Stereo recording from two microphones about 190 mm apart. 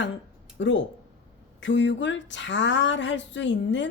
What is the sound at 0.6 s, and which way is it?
A woman's voice, 70° left (ahead or behind).